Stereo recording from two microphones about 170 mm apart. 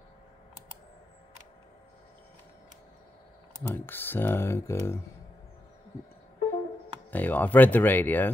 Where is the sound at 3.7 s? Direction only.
10° left (ahead or behind).